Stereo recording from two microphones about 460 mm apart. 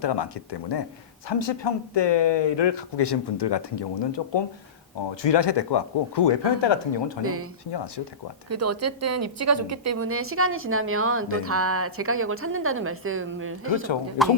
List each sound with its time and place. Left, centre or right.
0.0 s speech: left
7.2 s a woman's voice: right
8.4 s a woman's voice: right
14.2 s speech: centre